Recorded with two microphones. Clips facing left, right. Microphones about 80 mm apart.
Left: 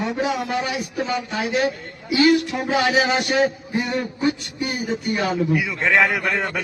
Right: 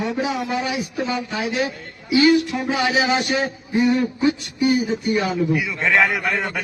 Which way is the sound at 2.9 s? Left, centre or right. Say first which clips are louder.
Left 1 dB; left.